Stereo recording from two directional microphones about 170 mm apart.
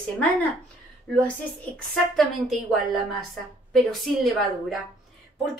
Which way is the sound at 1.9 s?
Centre (ahead or behind).